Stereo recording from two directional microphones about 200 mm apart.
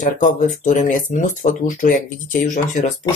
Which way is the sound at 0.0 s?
40° left (ahead or behind).